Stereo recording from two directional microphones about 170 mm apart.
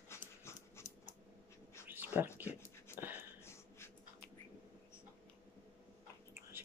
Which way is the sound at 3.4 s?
15° left (ahead or behind).